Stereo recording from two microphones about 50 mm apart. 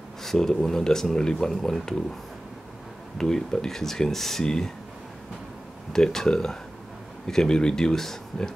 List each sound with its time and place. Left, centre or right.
0.2 s speech: centre
3.2 s speech: centre
5.9 s speech: centre